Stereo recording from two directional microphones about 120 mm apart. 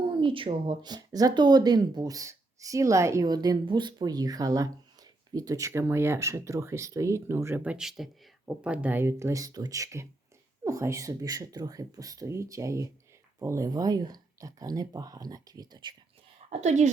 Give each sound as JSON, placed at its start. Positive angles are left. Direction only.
{"t": 0.0, "sound": "speech", "side_deg": -45}
{"t": 7.6, "sound": "speech", "side_deg": -5}
{"t": 16.5, "sound": "a woman's voice", "side_deg": -70}